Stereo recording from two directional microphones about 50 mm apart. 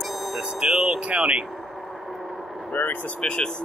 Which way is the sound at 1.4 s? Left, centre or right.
Centre.